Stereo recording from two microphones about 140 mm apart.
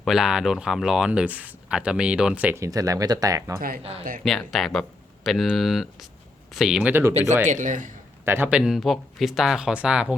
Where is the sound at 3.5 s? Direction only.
90° right.